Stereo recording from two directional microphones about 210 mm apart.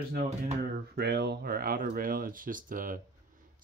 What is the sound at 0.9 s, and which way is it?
Speech, 50° right (ahead or behind).